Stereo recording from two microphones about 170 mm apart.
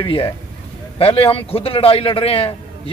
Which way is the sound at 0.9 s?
35° left (ahead or behind).